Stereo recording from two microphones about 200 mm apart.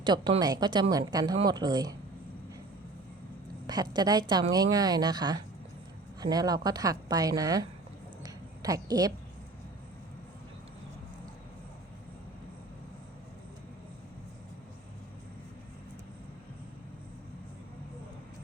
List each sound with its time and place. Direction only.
0.0 s a woman's voice: 20° right (ahead or behind)
3.7 s a woman's voice: 20° right (ahead or behind)
8.2 s a sound: 20° right (ahead or behind)